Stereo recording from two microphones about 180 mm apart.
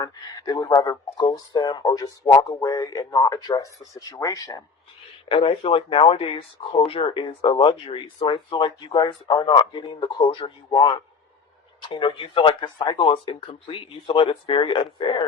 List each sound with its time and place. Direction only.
0.0 s speech: 20° left (ahead or behind)
5.3 s speech: 30° left (ahead or behind)